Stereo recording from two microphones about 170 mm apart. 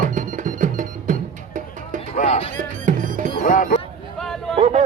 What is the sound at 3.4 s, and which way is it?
Music, 50° left (ahead or behind).